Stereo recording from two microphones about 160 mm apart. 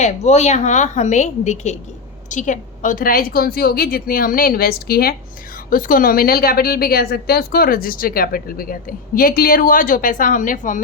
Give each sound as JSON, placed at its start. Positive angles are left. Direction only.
{"t": 0.0, "sound": "a woman's voice", "side_deg": 45}
{"t": 5.7, "sound": "a woman's voice", "side_deg": 60}